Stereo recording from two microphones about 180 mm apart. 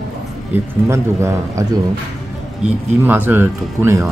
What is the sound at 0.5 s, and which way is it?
Speech, 15° right (ahead or behind).